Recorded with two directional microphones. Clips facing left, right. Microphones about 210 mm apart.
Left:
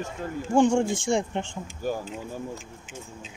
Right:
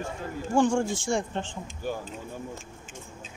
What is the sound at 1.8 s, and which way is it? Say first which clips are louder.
Speech: left 3 dB; 40° left (ahead or behind).